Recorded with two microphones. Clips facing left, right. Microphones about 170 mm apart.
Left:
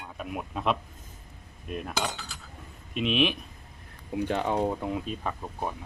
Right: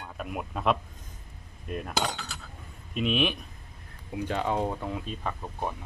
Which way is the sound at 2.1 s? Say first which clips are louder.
Right 3 dB; 70° right (ahead or behind).